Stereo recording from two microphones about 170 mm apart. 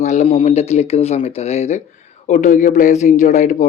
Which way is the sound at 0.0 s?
40° left (ahead or behind).